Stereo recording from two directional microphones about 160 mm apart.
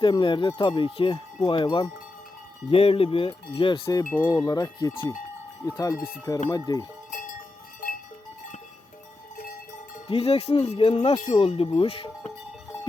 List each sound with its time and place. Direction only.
0.0 s wind chime: 30° left (ahead or behind)
2.6 s speech: 35° left (ahead or behind)
4.3 s wind chime: 25° left (ahead or behind)
7.1 s a sound: 55° left (ahead or behind)
9.4 s cowbell: 65° left (ahead or behind)
10.1 s speech: 40° left (ahead or behind)